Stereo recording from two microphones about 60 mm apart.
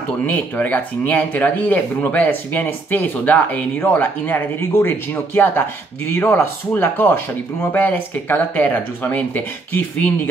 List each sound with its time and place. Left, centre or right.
0.3 s speech: left